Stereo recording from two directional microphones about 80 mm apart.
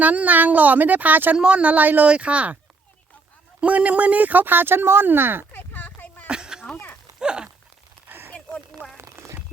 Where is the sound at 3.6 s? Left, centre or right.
Centre.